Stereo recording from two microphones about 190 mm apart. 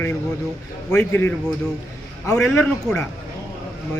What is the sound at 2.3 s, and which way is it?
Speech, 15° left (ahead or behind).